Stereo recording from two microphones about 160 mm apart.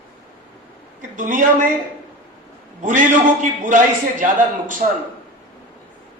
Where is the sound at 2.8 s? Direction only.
55° right (ahead or behind).